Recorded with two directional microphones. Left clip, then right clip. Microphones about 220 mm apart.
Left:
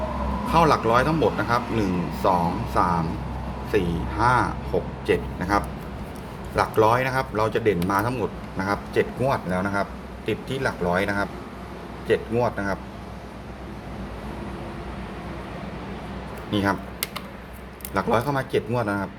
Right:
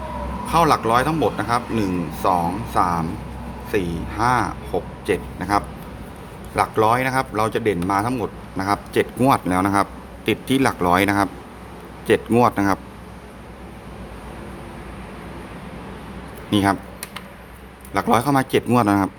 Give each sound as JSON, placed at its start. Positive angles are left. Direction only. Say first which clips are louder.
{"t": 0.5, "sound": "speech", "louder": "right 2 dB", "side_deg": -20}
{"t": 16.5, "sound": "speech", "louder": "right 5 dB", "side_deg": -35}
{"t": 17.9, "sound": "speech", "louder": "right 5 dB", "side_deg": -30}